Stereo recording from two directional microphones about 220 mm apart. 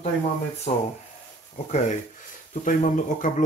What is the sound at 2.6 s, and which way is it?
Speech, 35° left (ahead or behind).